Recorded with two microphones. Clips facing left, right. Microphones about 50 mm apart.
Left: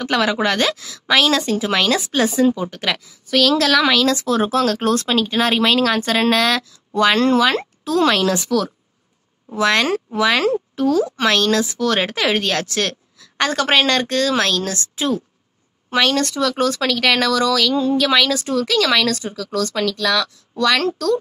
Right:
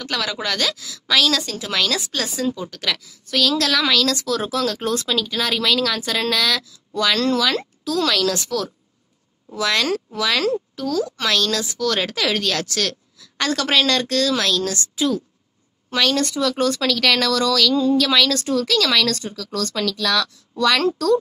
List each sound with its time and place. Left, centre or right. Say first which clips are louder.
0.0 s speech: left 7 dB; left
3.3 s speech: left 4 dB; centre; by 8.4 s left
8.4 s a woman's voice: left 5 dB; centre
9.5 s speech: left 4 dB; left
15.9 s a woman's voice: left 3 dB; centre
16.2 s a woman's voice: left 2 dB; centre